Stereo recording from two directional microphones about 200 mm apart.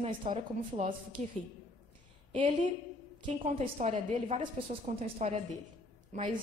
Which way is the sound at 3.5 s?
30° right (ahead or behind).